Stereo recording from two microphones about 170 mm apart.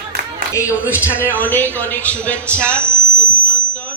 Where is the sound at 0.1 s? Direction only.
60° right (ahead or behind).